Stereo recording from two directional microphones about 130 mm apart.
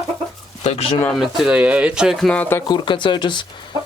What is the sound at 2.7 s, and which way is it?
Speech, 35° left (ahead or behind).